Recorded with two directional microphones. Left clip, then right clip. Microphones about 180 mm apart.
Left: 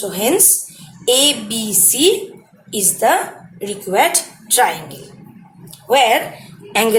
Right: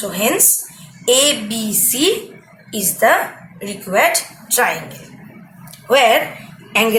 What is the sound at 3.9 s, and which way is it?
Speech, 30° left (ahead or behind).